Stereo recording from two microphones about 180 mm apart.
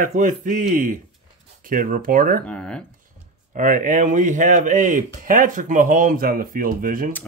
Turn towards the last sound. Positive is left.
turn(degrees=-50)  # may be behind; listen again after turning